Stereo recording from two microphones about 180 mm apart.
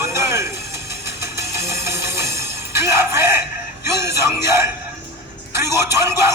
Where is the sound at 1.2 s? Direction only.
15° right (ahead or behind).